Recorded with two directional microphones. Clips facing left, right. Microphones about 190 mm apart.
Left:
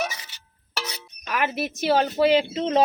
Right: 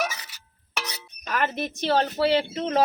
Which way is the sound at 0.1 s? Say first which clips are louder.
Right 1 dB; 25° left (ahead or behind).